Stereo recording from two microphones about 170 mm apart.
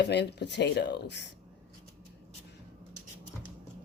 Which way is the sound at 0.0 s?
85° left.